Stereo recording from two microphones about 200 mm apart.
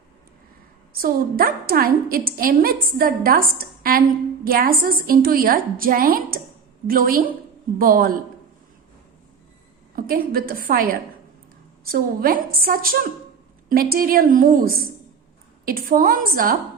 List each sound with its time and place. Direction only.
0.9 s a woman's voice: 45° right (ahead or behind)
9.9 s a woman's voice: 45° right (ahead or behind)